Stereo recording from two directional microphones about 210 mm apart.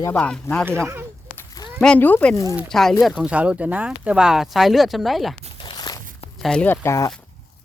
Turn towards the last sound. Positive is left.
turn(degrees=15)  # may be behind; listen again after turning